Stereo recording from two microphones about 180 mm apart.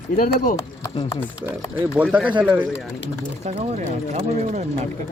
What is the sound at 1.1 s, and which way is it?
Speech, 15° left (ahead or behind).